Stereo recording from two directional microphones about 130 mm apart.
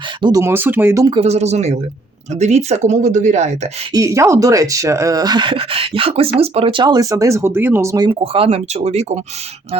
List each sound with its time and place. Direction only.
0.2 s speech: 30° right (ahead or behind)
0.5 s speech: 15° right (ahead or behind)
1.1 s speech: 55° right (ahead or behind)
3.9 s speech: 25° right (ahead or behind); by 6.8 s 45° right (ahead or behind)
6.8 s speech: 30° right (ahead or behind); by 9.2 s 55° right (ahead or behind)